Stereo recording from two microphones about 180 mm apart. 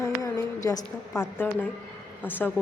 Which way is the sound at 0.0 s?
20° left (ahead or behind).